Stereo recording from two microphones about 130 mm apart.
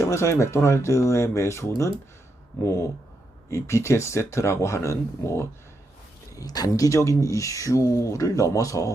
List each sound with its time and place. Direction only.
0.0 s speech: 20° left (ahead or behind)